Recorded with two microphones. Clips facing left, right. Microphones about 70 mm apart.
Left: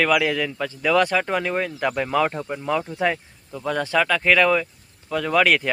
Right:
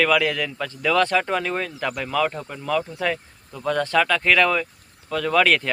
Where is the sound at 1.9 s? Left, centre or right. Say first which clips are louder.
Left 1 dB; left.